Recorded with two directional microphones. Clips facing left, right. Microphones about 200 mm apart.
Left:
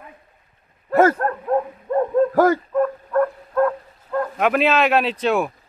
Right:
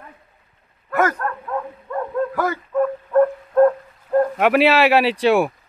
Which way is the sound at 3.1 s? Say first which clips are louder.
Right 4 dB; 20° right (ahead or behind).